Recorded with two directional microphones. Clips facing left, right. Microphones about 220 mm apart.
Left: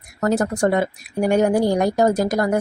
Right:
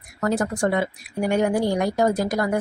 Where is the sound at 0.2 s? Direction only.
45° left (ahead or behind).